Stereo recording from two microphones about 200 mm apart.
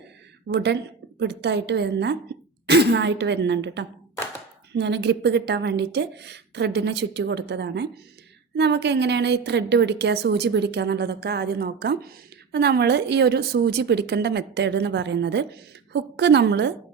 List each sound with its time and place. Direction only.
0.4 s a woman's voice: 60° right (ahead or behind)